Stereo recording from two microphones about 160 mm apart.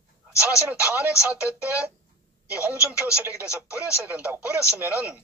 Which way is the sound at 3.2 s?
10° right (ahead or behind).